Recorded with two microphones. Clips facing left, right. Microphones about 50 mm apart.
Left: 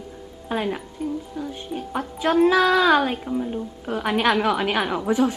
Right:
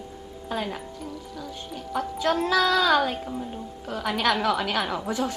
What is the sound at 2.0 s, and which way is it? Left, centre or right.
A woman's voice, left.